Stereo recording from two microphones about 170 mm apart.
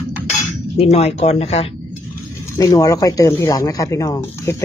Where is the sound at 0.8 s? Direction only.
35° left (ahead or behind).